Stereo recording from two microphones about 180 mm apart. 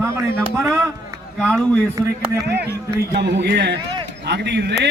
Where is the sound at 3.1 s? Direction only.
70° right (ahead or behind).